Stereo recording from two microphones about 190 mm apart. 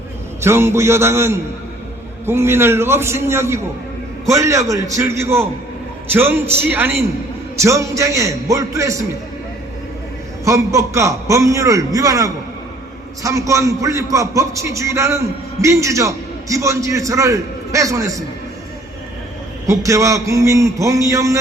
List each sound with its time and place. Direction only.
0.4 s a man's voice: 15° right (ahead or behind)
10.4 s a man's voice: 15° right (ahead or behind)
19.6 s a man's voice: 15° right (ahead or behind)